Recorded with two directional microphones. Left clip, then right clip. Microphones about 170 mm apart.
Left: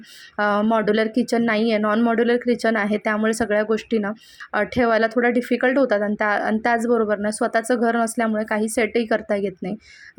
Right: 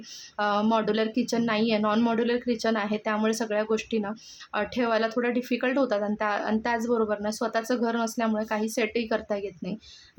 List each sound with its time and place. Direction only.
0.3 s speech: 30° left (ahead or behind)